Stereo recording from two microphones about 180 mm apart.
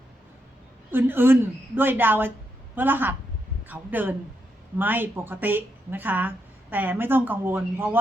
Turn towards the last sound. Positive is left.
turn(degrees=-10)  # may be behind; listen again after turning